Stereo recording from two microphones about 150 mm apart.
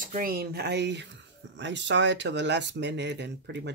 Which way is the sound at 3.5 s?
90° right.